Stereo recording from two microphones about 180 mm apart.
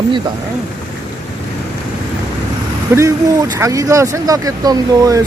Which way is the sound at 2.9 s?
15° right (ahead or behind).